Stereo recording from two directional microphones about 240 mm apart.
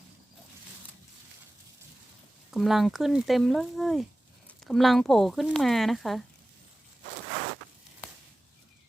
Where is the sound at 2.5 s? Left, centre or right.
Centre.